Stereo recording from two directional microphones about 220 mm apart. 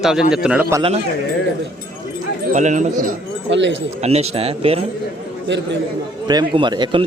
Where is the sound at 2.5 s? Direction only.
35° right (ahead or behind).